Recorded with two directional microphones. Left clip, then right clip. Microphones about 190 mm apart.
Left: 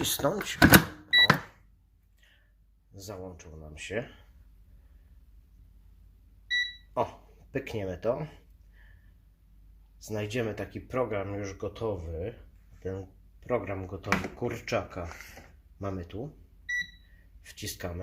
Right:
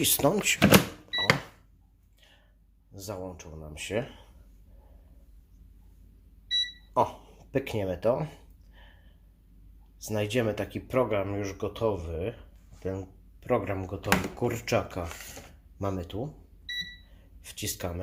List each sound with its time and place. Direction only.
0.1 s speech: 15° right (ahead or behind)
0.7 s a sound: 10° right (ahead or behind)
2.9 s speech: centre (ahead or behind)
6.5 s a sound: centre (ahead or behind)
10.0 s speech: centre (ahead or behind)
17.4 s speech: centre (ahead or behind)